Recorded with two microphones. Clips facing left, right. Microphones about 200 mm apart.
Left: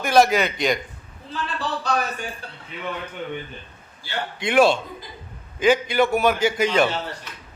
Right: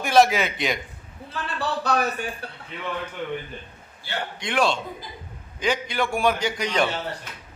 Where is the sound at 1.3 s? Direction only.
60° right (ahead or behind).